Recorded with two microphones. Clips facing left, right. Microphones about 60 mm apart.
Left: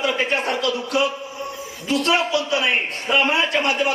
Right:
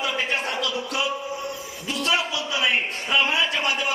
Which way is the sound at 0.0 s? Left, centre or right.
Left.